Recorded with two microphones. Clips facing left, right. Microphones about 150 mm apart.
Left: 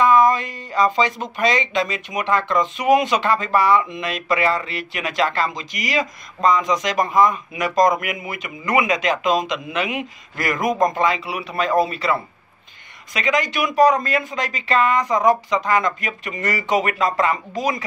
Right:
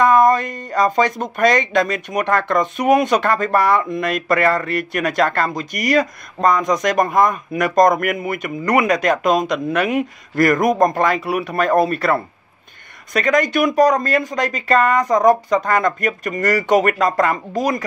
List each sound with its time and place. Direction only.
0.0 s speech: 55° right (ahead or behind)
13.7 s speech: 40° right (ahead or behind)
15.6 s speech: 55° right (ahead or behind)